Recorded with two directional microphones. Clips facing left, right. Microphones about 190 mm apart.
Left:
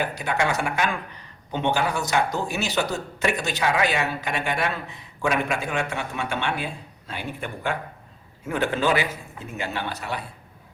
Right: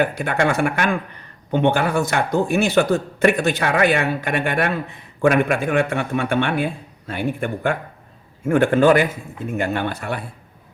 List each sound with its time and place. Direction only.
0.0 s a man's voice: 55° right (ahead or behind)